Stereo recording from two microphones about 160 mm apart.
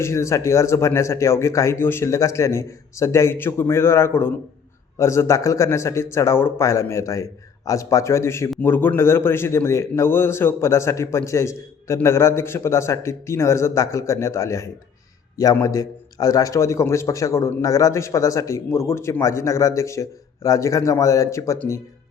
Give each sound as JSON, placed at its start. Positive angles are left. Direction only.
{"t": 0.0, "sound": "a man's voice", "side_deg": 15}